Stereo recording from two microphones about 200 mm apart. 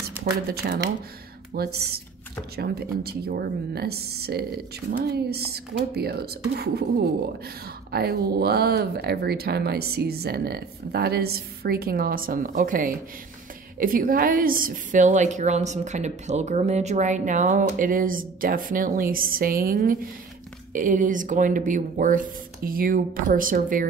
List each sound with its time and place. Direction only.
0.1 s a woman's voice: 50° right (ahead or behind)
7.9 s a woman's voice: 50° right (ahead or behind)